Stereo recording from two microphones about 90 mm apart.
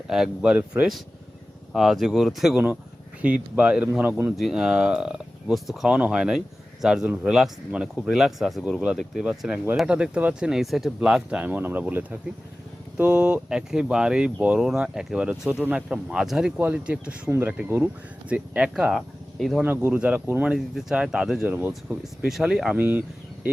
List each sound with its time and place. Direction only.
0.1 s speech: 5° right (ahead or behind)
1.7 s speech: 5° right (ahead or behind)
3.2 s speech: 15° right (ahead or behind)
4.4 s speech: centre (ahead or behind)
10.5 s speech: centre (ahead or behind)
18.3 s speech: 15° right (ahead or behind)
19.6 s speech: 20° right (ahead or behind)
21.4 s speech: 20° right (ahead or behind)
21.7 s speech: 5° right (ahead or behind)
22.7 s speech: 20° right (ahead or behind)